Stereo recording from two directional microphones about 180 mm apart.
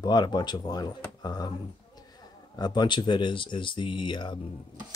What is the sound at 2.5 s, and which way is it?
Speech, 25° left (ahead or behind).